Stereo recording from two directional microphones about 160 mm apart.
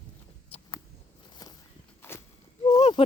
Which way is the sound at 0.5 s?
40° left (ahead or behind).